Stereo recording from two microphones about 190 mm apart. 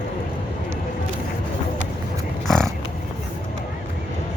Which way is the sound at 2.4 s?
Centre (ahead or behind).